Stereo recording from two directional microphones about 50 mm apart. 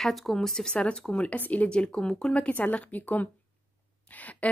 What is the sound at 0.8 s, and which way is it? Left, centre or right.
Speech, left.